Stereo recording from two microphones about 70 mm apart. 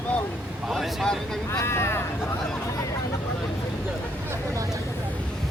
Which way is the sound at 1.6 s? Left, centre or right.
Left.